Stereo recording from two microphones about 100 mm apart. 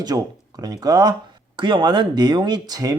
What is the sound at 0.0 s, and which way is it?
Speech, 40° right (ahead or behind).